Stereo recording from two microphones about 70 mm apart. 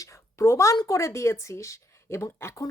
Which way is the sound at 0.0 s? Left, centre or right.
Left.